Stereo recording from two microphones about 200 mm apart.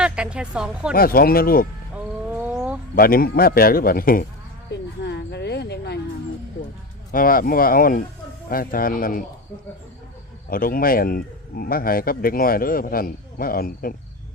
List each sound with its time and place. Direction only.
0.0 s speech: 5° right (ahead or behind)
0.9 s speech: 50° left (ahead or behind)
2.2 s bird: 5° right (ahead or behind)
2.9 s speech: 45° left (ahead or behind)
4.7 s speech: 55° left (ahead or behind)
7.1 s speech: 45° left (ahead or behind)
10.5 s speech: 45° left (ahead or behind)